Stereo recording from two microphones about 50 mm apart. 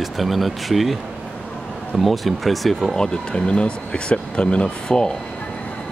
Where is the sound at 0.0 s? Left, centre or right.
Centre.